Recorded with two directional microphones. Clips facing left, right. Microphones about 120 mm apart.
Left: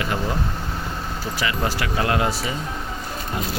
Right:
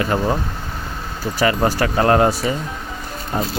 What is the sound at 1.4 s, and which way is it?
Speech, 40° right (ahead or behind).